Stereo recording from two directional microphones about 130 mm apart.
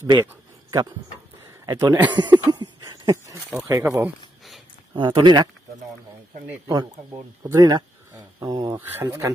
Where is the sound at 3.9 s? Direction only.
5° right (ahead or behind).